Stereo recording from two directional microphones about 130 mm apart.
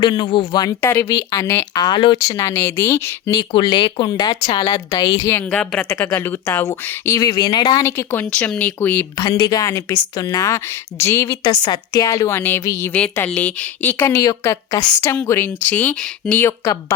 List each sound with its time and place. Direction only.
0.0 s a woman's voice: 35° left (ahead or behind)
0.8 s a woman's voice: 15° left (ahead or behind)
1.8 s speech: 35° left (ahead or behind)
3.5 s a woman's voice: 40° left (ahead or behind)
5.3 s a woman's voice: 10° left (ahead or behind)
6.0 s speech: 20° left (ahead or behind)
9.4 s speech: 30° left (ahead or behind)
12.9 s a woman's voice: 10° left (ahead or behind)
16.4 s speech: 20° left (ahead or behind)